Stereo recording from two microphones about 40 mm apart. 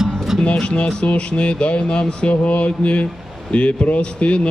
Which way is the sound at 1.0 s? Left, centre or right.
Left.